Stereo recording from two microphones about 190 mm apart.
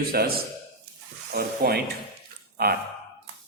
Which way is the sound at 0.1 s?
55° right (ahead or behind).